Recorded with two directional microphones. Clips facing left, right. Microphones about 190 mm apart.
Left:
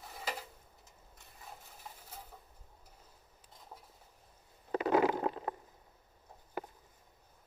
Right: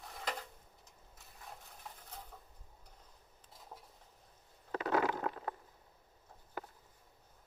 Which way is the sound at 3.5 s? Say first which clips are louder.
Even; centre (ahead or behind).